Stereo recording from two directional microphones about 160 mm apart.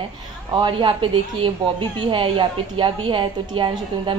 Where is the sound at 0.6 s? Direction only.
30° right (ahead or behind).